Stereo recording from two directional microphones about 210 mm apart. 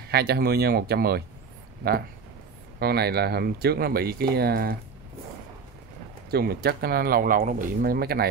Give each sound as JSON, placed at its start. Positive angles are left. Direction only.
{"t": 0.1, "sound": "speech", "side_deg": -50}
{"t": 2.8, "sound": "speech", "side_deg": -50}
{"t": 6.3, "sound": "speech", "side_deg": -50}